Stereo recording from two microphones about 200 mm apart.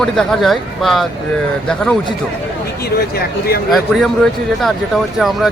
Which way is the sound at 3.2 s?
50° left (ahead or behind).